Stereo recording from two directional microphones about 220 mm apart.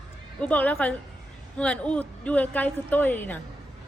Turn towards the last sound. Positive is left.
turn(degrees=10)  # may be behind; listen again after turning